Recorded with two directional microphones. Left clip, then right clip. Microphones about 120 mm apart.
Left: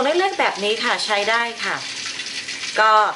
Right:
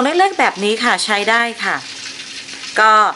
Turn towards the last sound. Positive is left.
turn(degrees=-30)  # may be behind; listen again after turning